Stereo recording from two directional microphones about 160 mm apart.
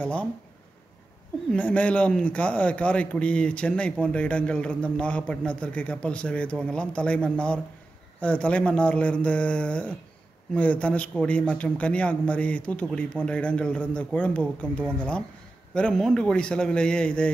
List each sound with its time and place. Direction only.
0.0 s a man's voice: 5° left (ahead or behind)
1.5 s a man's voice: 10° left (ahead or behind)